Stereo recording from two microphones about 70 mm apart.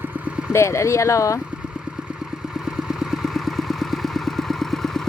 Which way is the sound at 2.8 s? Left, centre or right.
Centre.